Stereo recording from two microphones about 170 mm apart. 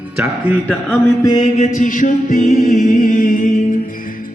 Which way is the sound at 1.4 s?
45° left (ahead or behind).